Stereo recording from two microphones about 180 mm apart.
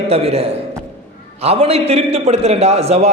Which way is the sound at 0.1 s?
35° right (ahead or behind).